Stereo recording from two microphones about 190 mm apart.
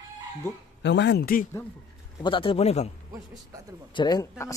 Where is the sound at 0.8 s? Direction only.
65° left (ahead or behind).